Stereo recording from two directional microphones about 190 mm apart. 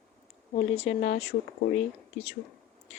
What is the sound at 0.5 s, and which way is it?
Speech, 35° left (ahead or behind).